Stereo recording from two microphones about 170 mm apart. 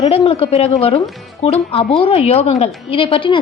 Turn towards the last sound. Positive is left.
turn(degrees=30)  # may be behind; listen again after turning